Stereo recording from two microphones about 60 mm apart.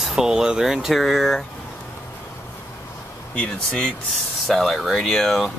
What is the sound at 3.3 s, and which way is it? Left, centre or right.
Speech, centre.